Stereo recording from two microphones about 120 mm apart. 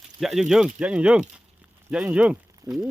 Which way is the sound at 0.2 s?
Centre (ahead or behind).